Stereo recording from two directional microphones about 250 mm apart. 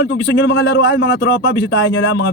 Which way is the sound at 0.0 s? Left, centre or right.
Left.